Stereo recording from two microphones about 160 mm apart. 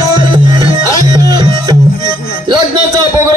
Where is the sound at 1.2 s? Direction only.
25° right (ahead or behind).